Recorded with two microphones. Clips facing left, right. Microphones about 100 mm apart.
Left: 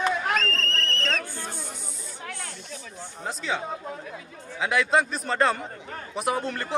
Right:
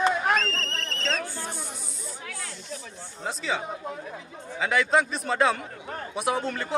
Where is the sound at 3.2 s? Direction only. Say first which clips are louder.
Even; centre (ahead or behind).